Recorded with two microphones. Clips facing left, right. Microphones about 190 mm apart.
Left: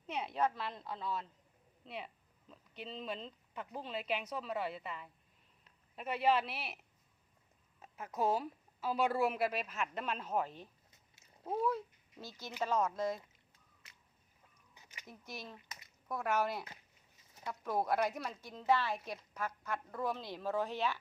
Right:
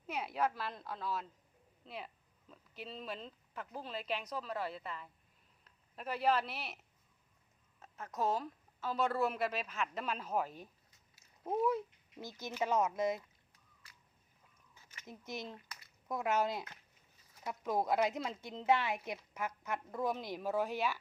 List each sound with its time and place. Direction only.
0.1 s a woman's voice: 5° right (ahead or behind)
2.5 s a woman's voice: centre (ahead or behind)
7.8 s a woman's voice: 10° left (ahead or behind); by 13.2 s 15° right (ahead or behind)
14.8 s a sound: 15° left (ahead or behind)
15.0 s speech: 20° right (ahead or behind)
15.5 s a sound: 20° left (ahead or behind)
16.0 s a woman's voice: 15° right (ahead or behind)